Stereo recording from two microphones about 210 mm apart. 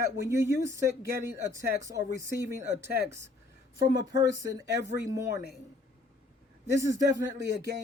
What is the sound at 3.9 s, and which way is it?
Speech, 15° right (ahead or behind).